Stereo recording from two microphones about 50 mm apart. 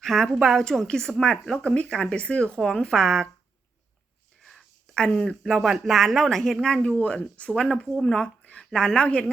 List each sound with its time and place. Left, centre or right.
0.0 s a woman's voice: centre; by 2.6 s left
2.8 s a woman's voice: centre
4.9 s a woman's voice: centre
5.4 s speech: centre; by 7.5 s left
7.5 s a woman's voice: centre